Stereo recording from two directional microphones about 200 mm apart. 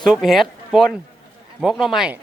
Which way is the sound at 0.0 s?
Centre (ahead or behind).